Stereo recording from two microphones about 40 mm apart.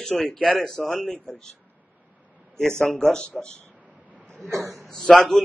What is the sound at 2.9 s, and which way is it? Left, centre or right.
Speech, left.